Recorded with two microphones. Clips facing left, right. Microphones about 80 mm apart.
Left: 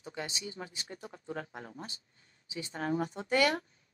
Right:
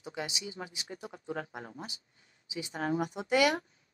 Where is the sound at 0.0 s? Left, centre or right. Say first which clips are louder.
Right 1 dB; centre.